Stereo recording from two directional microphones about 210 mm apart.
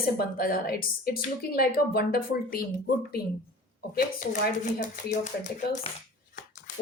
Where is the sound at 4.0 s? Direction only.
45° left (ahead or behind).